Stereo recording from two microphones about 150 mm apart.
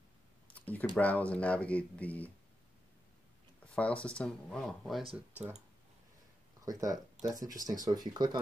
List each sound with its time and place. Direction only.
0.6 s a sound: 10° left (ahead or behind)
0.9 s speech: 10° left (ahead or behind)
3.7 s speech: 10° left (ahead or behind)
6.6 s speech: 25° right (ahead or behind)